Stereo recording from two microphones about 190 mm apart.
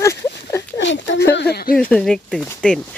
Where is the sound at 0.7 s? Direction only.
70° left (ahead or behind).